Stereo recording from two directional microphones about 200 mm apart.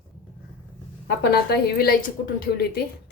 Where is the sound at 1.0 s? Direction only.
55° left (ahead or behind).